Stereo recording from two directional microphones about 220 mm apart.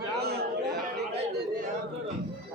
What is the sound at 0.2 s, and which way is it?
Chatter, 45° right (ahead or behind).